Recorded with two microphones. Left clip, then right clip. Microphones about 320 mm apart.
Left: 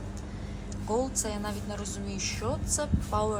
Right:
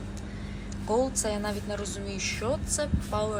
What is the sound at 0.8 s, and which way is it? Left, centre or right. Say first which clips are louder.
Speech: right 3 dB; centre.